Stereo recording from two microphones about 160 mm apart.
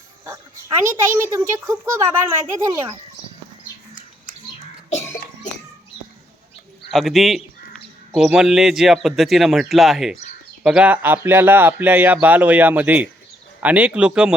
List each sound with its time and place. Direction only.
0.8 s speech: 15° right (ahead or behind)
6.9 s speech: centre (ahead or behind)